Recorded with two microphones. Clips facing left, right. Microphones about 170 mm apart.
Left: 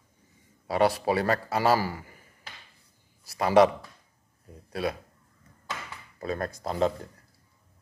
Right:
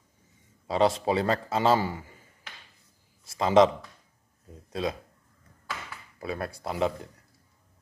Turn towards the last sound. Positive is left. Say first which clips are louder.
# left 2 dB
turn(degrees=-15)  # may be behind; listen again after turning